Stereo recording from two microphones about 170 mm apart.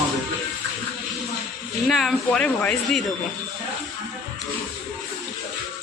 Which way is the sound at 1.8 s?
Centre (ahead or behind).